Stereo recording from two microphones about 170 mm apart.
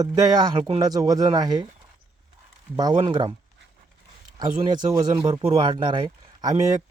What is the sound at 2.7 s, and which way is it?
Speech, 25° right (ahead or behind).